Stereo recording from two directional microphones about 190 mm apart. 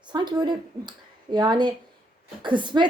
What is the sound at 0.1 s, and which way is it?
A woman's voice, 25° right (ahead or behind).